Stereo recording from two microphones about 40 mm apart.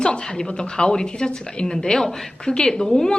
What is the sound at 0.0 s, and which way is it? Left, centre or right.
Speech, left.